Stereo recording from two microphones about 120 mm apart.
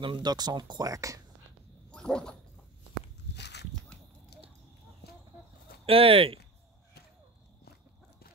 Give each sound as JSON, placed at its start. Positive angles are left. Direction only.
{"t": 0.0, "sound": "speech", "side_deg": -40}
{"t": 1.9, "sound": "a sound", "side_deg": 5}
{"t": 5.9, "sound": "speech", "side_deg": -55}